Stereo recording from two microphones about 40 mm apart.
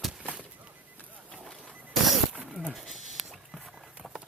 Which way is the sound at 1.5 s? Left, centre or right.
Centre.